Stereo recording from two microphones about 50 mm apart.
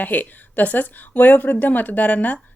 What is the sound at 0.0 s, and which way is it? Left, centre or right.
A woman's voice, left.